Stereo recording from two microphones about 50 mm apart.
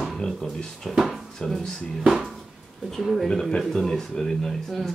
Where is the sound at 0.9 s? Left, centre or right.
Centre.